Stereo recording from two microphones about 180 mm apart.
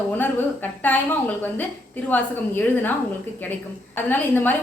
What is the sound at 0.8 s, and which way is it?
A woman's voice, 10° left (ahead or behind).